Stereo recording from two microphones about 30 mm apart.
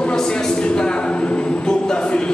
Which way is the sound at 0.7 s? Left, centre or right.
Left.